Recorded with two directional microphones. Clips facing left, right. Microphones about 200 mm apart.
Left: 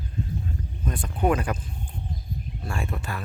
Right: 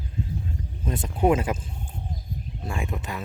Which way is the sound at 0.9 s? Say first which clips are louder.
Right 2 dB; 25° right (ahead or behind).